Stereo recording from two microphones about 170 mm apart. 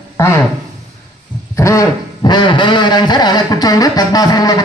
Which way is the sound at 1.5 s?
20° left (ahead or behind).